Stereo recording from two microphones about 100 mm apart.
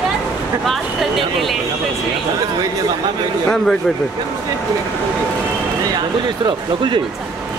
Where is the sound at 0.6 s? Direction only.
Centre (ahead or behind).